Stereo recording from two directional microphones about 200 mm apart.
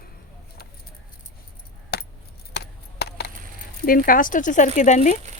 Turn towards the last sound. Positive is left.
turn(degrees=35)  # may be behind; listen again after turning